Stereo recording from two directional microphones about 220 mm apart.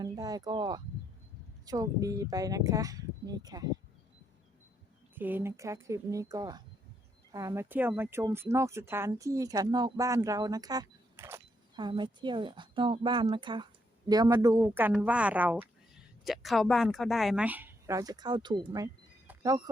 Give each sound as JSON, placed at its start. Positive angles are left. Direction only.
{"t": 0.0, "sound": "speech", "side_deg": -15}
{"t": 5.1, "sound": "speech", "side_deg": -10}
{"t": 19.3, "sound": "a sound", "side_deg": -15}